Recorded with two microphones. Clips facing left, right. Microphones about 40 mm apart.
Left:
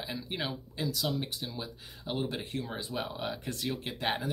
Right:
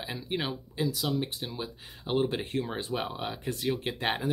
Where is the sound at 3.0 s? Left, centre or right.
Centre.